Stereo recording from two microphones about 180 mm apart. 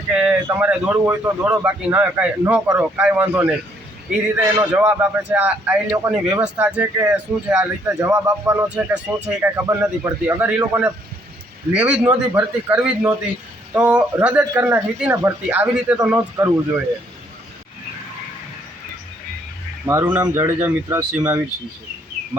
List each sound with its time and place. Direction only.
0.1 s a sound: 5° right (ahead or behind)
0.4 s speech: 10° right (ahead or behind)
20.1 s speech: 20° right (ahead or behind)